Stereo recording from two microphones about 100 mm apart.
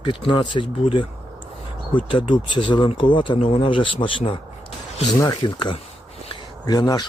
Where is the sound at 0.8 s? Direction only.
65° left (ahead or behind).